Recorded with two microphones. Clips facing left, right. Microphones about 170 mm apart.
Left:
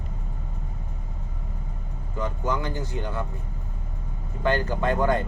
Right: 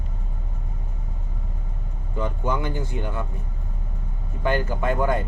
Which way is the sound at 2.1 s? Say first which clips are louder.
Right 2 dB; 20° right (ahead or behind).